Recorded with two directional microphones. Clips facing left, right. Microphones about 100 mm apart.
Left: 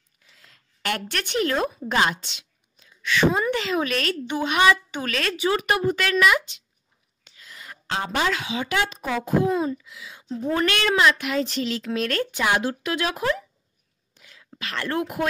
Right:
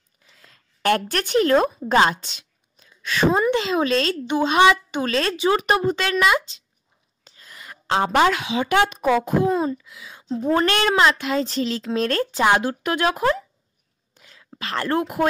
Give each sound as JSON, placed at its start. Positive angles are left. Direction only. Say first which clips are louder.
{"t": 0.3, "sound": "a sound", "louder": "right 2 dB", "side_deg": -40}
{"t": 3.3, "sound": "speech", "louder": "right 5 dB", "side_deg": -25}
{"t": 7.2, "sound": "a woman's voice", "louder": "right 1 dB", "side_deg": -40}
{"t": 14.1, "sound": "whispering", "louder": "right 2 dB", "side_deg": -40}